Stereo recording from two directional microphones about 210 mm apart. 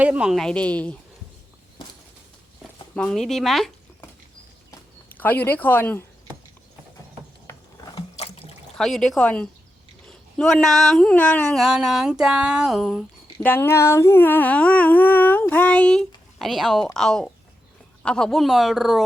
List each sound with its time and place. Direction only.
0.0 s speech: 5° right (ahead or behind)
2.9 s speech: 5° left (ahead or behind)
5.0 s speech: 10° left (ahead or behind)
7.5 s a sound: 10° left (ahead or behind)
7.9 s water: 25° left (ahead or behind)
8.8 s speech: centre (ahead or behind)